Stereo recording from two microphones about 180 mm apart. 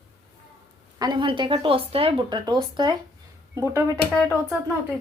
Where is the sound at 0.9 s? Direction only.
25° right (ahead or behind).